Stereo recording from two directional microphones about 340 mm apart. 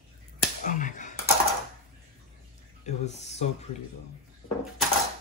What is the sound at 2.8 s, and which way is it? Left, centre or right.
Speech, centre.